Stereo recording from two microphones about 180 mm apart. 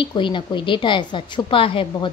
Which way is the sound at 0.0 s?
25° left (ahead or behind).